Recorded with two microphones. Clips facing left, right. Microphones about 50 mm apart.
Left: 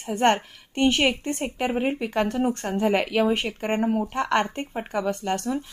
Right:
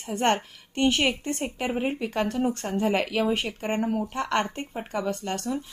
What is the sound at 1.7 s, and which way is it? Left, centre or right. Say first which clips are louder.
Speech: left 2 dB; centre.